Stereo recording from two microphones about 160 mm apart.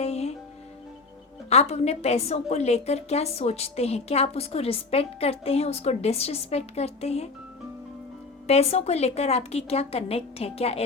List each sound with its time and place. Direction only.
0.0 s music: 40° left (ahead or behind)
1.5 s a woman's voice: 40° left (ahead or behind)
8.4 s a woman's voice: 40° left (ahead or behind)